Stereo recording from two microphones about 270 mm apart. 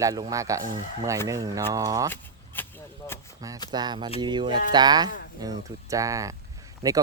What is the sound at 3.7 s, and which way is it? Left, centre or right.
Speech, centre.